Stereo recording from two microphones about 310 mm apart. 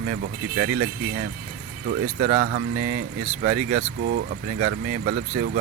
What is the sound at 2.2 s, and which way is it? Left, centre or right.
Speech, right.